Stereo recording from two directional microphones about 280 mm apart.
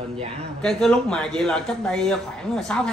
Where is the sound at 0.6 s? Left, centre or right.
Centre.